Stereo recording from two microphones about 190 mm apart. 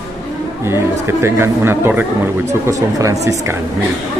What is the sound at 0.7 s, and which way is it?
Speech, 15° right (ahead or behind).